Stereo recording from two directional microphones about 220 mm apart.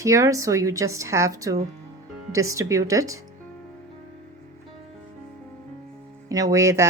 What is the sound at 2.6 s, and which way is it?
Speech, 15° right (ahead or behind).